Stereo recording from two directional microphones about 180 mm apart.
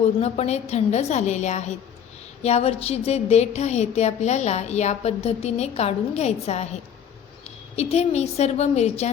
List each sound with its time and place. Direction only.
0.0 s a woman's voice: 35° left (ahead or behind)